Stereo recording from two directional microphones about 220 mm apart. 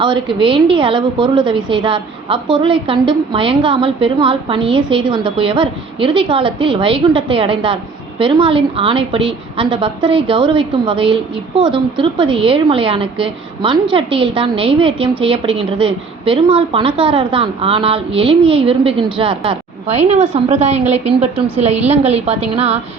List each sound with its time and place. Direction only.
0.0 s a woman's voice: 20° right (ahead or behind)